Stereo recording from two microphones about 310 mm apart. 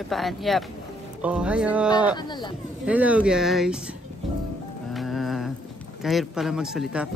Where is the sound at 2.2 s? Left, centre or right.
Centre.